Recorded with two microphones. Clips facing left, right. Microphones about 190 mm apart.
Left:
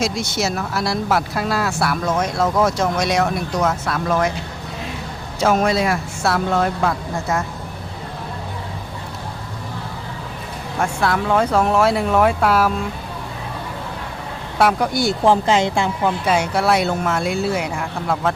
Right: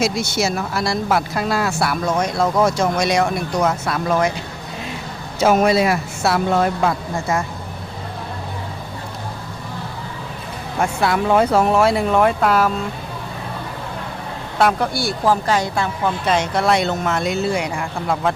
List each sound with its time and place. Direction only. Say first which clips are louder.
0.0 s speech: right 2 dB; centre (ahead or behind)
5.4 s speech: right 2 dB; 5° right (ahead or behind)
10.8 s speech: right 1 dB; 10° right (ahead or behind); by 12.7 s 5° left (ahead or behind)
14.6 s speech: even; 10° left (ahead or behind)
14.9 s speech: left 3 dB; 25° left (ahead or behind)
16.2 s speech: right 1 dB; 10° left (ahead or behind)